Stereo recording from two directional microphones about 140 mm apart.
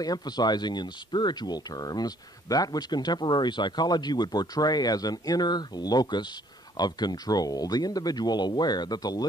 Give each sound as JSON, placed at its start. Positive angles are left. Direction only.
{"t": 0.0, "sound": "speech", "side_deg": 30}